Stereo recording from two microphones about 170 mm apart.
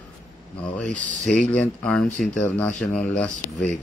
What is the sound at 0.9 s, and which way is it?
Speech, 45° right (ahead or behind).